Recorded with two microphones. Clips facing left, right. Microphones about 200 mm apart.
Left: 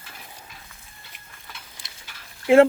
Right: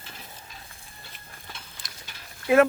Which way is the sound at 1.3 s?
35° right (ahead or behind).